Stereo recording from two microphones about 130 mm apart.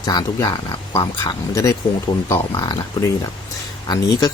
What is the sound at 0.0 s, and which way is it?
Speech, 30° left (ahead or behind).